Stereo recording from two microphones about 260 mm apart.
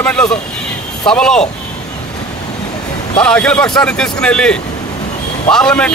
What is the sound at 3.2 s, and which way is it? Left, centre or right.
Speech, centre.